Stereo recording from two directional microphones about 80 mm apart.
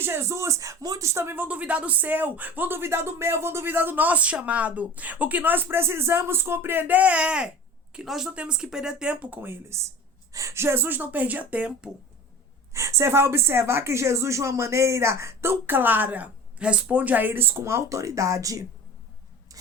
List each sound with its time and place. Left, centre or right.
0.0 s speech: right
1.4 s speech: centre
9.4 s speech: right; by 11.9 s centre
12.7 s speech: right